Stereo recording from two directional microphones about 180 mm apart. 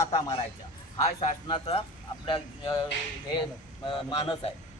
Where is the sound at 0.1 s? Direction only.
30° left (ahead or behind).